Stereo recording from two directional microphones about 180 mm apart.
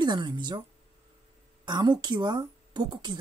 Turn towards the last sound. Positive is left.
turn(degrees=-25)  # may be behind; listen again after turning